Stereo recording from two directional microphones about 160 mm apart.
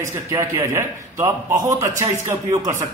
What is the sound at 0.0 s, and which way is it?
A man's voice, 20° right (ahead or behind).